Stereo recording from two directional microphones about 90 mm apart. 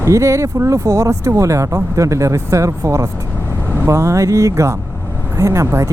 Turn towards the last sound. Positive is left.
turn(degrees=-35)  # may be behind; listen again after turning